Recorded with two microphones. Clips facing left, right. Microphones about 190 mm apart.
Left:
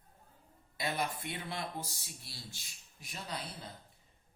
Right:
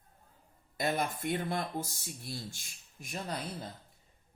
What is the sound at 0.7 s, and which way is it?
Speech, 45° right (ahead or behind).